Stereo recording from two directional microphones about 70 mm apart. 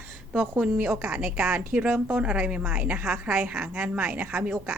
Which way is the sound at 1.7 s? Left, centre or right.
Right.